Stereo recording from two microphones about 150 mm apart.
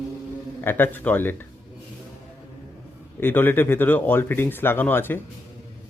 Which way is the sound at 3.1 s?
15° left (ahead or behind).